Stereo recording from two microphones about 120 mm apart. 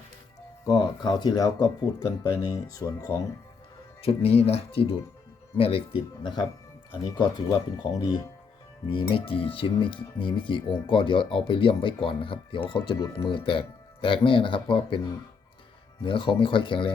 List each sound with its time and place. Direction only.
0.6 s speech: 35° left (ahead or behind)
4.0 s speech: 55° left (ahead or behind); by 8.2 s 35° left (ahead or behind)
8.9 s speech: 45° left (ahead or behind)
16.0 s speech: 45° left (ahead or behind)